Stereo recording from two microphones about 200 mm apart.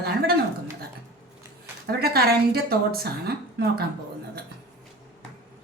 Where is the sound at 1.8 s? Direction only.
50° right (ahead or behind).